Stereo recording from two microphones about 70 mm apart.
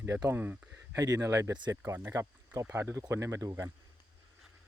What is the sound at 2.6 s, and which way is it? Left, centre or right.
Speech, right.